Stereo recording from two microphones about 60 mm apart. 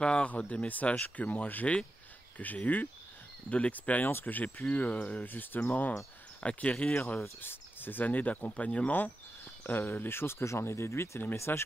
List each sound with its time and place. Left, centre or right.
0.0 s speech: centre
7.4 s speech: left